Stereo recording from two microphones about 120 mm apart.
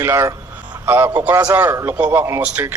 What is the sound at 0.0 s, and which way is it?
A man's voice, 20° right (ahead or behind).